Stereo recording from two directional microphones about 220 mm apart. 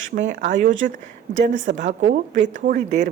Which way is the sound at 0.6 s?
55° right (ahead or behind).